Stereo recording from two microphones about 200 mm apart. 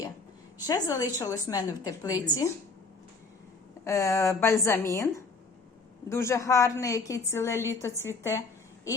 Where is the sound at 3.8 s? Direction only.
15° left (ahead or behind).